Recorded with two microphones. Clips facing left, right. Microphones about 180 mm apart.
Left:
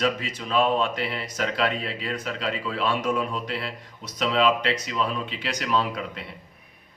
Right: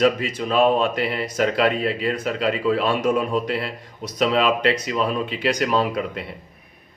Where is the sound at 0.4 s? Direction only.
50° right (ahead or behind).